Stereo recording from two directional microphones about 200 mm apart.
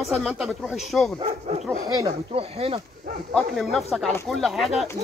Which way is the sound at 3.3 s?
Centre (ahead or behind).